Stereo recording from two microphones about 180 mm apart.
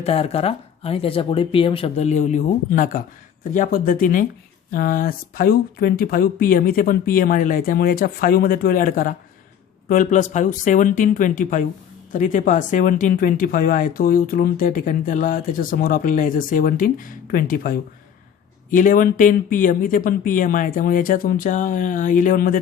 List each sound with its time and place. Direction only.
0.0 s speech: 35° left (ahead or behind); by 22.5 s 50° left (ahead or behind)